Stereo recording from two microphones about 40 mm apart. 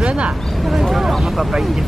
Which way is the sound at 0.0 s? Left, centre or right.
Right.